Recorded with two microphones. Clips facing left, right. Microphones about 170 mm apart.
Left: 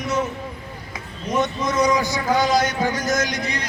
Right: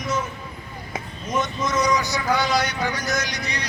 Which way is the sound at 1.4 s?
60° left (ahead or behind).